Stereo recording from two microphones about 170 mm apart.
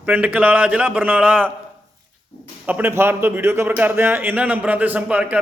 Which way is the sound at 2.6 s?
10° right (ahead or behind).